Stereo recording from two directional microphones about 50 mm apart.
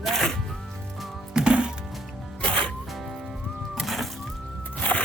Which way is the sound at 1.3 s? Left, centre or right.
Centre.